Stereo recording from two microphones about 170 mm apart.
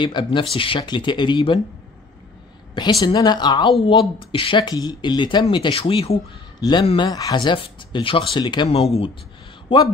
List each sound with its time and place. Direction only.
0.0 s speech: 30° left (ahead or behind)
2.7 s speech: 25° left (ahead or behind)